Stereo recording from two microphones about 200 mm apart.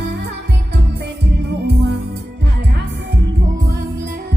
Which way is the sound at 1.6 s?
55° right (ahead or behind).